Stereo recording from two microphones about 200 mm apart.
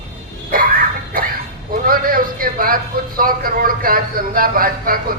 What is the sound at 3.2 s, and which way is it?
Speech, 45° right (ahead or behind).